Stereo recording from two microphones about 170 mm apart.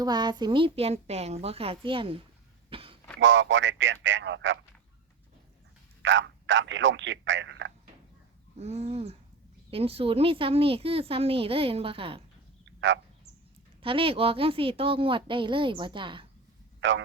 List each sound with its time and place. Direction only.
0.0 s speech: 25° right (ahead or behind)
2.6 s a sound: 30° right (ahead or behind)
3.2 s a man's voice: 90° right
6.0 s a man's voice: 90° right
8.5 s speech: 40° right (ahead or behind)
12.8 s a man's voice: 90° right
13.8 s speech: 30° right (ahead or behind)
16.8 s a man's voice: 90° right